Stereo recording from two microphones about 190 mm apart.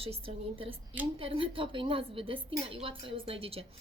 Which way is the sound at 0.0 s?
30° right (ahead or behind).